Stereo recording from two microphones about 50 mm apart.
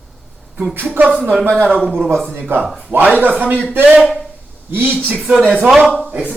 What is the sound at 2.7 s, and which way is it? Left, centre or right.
Speech, centre.